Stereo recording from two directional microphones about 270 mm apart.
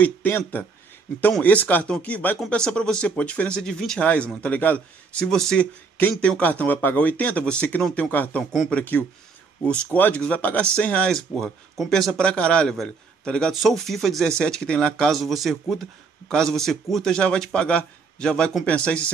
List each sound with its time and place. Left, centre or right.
0.0 s speech: centre